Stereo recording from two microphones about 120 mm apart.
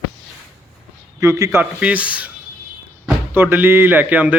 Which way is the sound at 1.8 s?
10° right (ahead or behind).